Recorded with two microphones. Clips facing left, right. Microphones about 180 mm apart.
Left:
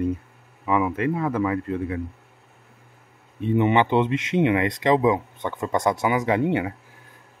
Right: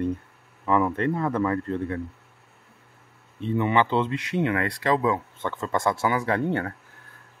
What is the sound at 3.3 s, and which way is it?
Speech, 15° left (ahead or behind).